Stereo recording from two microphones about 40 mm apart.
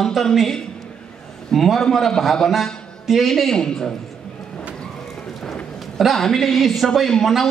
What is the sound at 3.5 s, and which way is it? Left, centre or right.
Speech, centre.